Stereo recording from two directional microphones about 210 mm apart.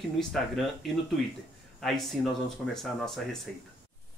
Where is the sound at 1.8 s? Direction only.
Centre (ahead or behind).